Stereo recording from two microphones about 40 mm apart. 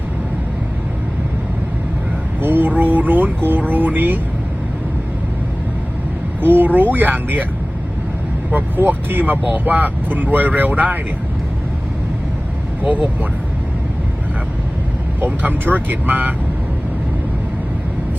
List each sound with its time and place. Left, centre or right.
2.4 s speech: right
6.4 s speech: right
8.4 s speech: right
12.8 s speech: right
15.2 s speech: right